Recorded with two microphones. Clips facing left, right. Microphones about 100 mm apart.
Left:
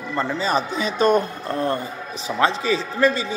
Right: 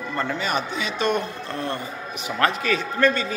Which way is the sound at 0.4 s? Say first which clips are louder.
Left 4 dB; 35° left (ahead or behind).